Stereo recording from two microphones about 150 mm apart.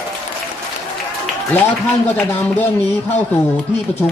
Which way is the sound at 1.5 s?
15° left (ahead or behind).